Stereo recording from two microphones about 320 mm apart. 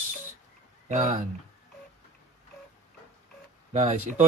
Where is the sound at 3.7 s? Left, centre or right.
Right.